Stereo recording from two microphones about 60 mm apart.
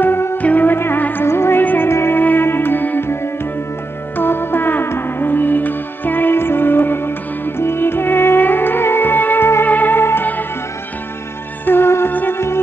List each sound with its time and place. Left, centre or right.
0.0 s music: left
0.4 s music: left
1.6 s music: left
1.9 s music: left
4.2 s music: left
11.6 s music: left
12.1 s music: left